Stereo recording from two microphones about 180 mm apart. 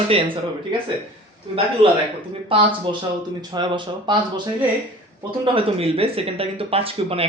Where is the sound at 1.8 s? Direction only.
30° right (ahead or behind).